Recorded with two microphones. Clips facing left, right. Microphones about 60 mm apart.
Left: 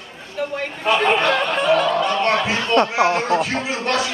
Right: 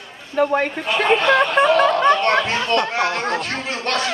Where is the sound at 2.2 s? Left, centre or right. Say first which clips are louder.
Right 1 dB; centre.